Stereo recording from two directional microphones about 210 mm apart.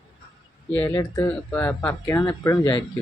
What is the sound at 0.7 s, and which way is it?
Speech, 10° left (ahead or behind).